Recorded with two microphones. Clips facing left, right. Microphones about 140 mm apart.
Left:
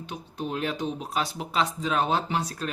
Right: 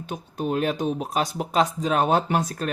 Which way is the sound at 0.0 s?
45° right (ahead or behind).